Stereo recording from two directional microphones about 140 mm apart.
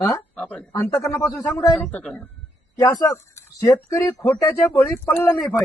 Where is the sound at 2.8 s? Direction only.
20° left (ahead or behind).